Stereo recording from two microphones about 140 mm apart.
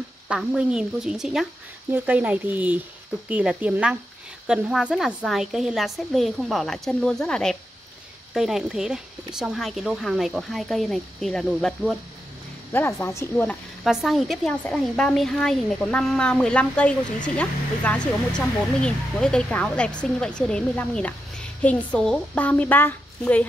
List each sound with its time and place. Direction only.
0.3 s speech: 5° right (ahead or behind)
12.7 s a woman's voice: 15° left (ahead or behind)
13.8 s a woman's voice: centre (ahead or behind)